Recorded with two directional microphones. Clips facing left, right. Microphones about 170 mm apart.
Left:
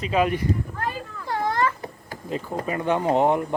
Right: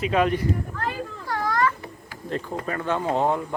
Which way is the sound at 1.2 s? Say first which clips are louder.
Left 1 dB; 25° left (ahead or behind).